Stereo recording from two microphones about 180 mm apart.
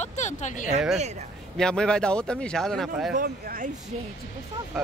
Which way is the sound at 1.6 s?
5° left (ahead or behind).